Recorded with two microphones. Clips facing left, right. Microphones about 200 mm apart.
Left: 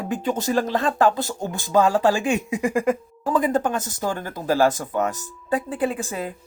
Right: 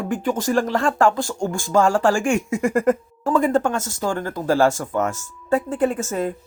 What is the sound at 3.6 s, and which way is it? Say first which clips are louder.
Speech: right 2 dB; 15° left (ahead or behind).